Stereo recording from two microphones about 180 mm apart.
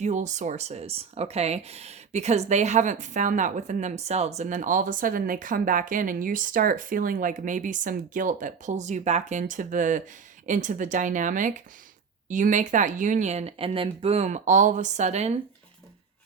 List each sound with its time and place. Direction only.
0.0 s speech: 40° right (ahead or behind)